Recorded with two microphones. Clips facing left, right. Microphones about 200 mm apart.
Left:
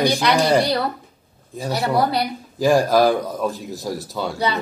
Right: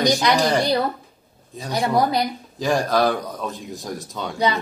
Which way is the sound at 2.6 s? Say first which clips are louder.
Left 4 dB; 10° left (ahead or behind).